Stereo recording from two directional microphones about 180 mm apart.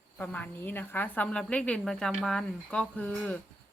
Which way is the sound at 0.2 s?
10° left (ahead or behind).